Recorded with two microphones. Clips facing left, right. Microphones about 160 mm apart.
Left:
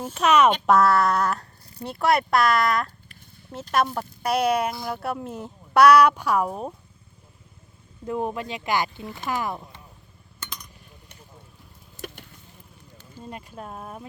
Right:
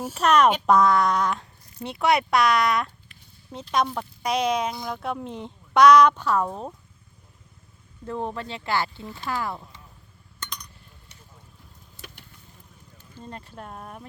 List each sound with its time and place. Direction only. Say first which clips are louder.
0.0 s a child's voice: left 1 dB; 5° right (ahead or behind)
0.3 s speech: even; 5° left (ahead or behind)
8.0 s speech: left 3 dB; 10° left (ahead or behind)
10.4 s a sound: right 1 dB; 5° left (ahead or behind)
11.9 s vehicle: left 9 dB; 45° left (ahead or behind)
13.1 s speech: left 2 dB; 10° left (ahead or behind)